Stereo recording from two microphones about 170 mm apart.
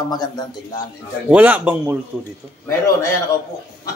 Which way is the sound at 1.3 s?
10° right (ahead or behind).